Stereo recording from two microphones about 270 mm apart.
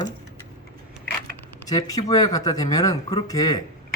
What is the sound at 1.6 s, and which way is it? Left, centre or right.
Speech, centre.